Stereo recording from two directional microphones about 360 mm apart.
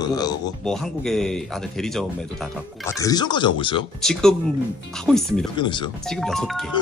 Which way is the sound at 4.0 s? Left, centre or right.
Centre.